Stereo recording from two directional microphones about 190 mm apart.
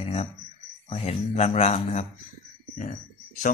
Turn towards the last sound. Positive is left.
turn(degrees=40)  # may be behind; listen again after turning